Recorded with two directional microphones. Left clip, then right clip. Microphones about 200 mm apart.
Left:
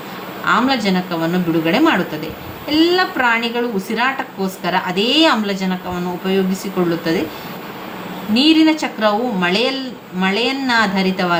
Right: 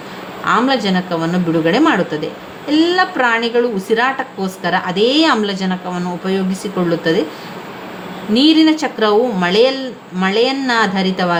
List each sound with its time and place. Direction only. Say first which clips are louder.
0.4 s a woman's voice: right 1 dB; 35° right (ahead or behind)
8.3 s a woman's voice: right 2 dB; 35° right (ahead or behind)